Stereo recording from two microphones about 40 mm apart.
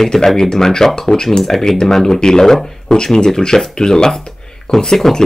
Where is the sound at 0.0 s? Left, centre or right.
Centre.